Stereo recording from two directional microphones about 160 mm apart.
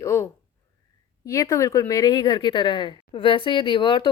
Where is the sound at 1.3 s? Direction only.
20° left (ahead or behind).